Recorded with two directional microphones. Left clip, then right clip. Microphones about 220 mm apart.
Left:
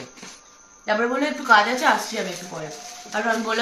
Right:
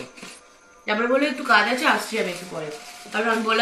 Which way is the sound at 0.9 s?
15° left (ahead or behind).